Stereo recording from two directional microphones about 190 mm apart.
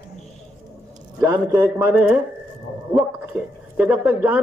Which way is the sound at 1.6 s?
10° right (ahead or behind).